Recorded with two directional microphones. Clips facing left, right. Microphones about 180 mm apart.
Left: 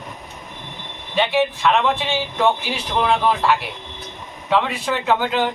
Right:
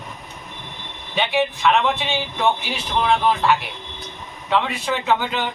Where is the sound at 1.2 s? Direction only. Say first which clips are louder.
Left 2 dB; centre (ahead or behind).